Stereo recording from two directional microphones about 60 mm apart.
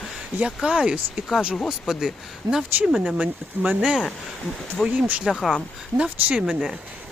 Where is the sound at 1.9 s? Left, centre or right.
Centre.